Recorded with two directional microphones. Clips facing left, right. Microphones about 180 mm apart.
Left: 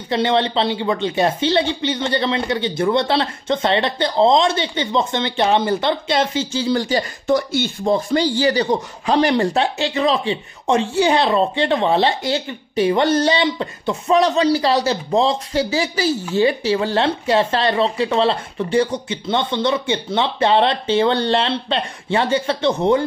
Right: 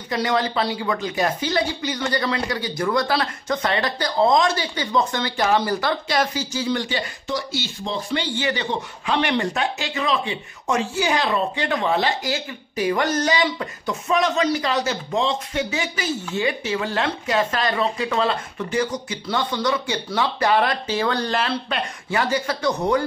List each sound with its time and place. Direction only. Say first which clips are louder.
0.1 s speech: left 4 dB; 25° left (ahead or behind)